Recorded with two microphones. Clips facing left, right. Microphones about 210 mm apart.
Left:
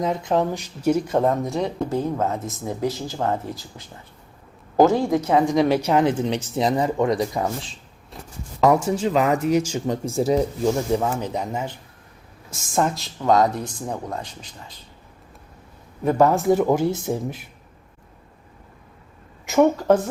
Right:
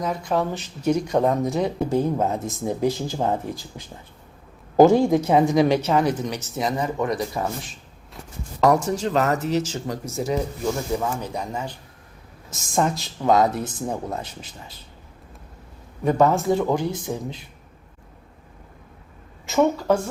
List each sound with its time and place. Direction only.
0.0 s speech: 20° left (ahead or behind); by 1.9 s centre (ahead or behind)
1.9 s speech: 15° right (ahead or behind)
5.5 s speech: centre (ahead or behind); by 7.4 s 25° left (ahead or behind)
8.6 s speech: 5° left (ahead or behind)
12.5 s speech: centre (ahead or behind)
16.0 s speech: 10° left (ahead or behind)
16.5 s speech: 20° left (ahead or behind)
19.5 s speech: 15° left (ahead or behind)